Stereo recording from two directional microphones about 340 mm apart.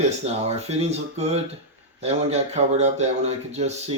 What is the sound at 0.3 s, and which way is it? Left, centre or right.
Speech, centre.